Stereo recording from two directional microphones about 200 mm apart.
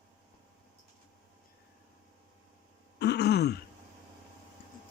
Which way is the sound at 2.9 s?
55° left (ahead or behind).